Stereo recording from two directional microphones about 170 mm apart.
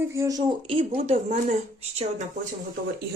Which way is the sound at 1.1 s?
45° right (ahead or behind).